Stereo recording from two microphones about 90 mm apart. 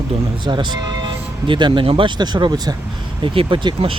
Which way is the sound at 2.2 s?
55° right (ahead or behind).